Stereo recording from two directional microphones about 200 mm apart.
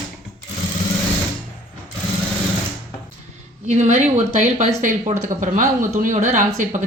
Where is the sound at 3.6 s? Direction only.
35° right (ahead or behind).